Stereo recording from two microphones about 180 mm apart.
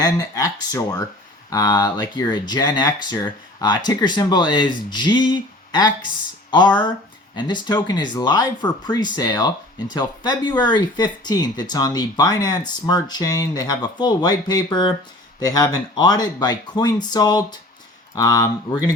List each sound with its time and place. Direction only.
0.0 s speech: 20° left (ahead or behind)
7.3 s speech: 25° left (ahead or behind)